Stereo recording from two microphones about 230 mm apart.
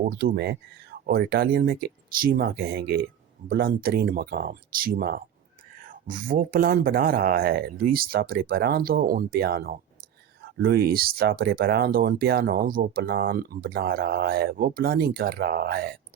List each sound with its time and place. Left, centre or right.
0.1 s speech: right